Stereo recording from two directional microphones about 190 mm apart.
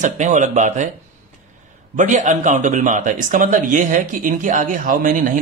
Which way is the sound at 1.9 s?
40° right (ahead or behind).